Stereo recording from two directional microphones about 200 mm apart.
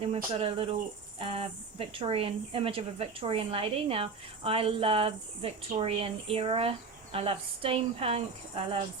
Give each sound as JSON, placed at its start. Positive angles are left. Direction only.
{"t": 0.3, "sound": "a woman's voice", "side_deg": -30}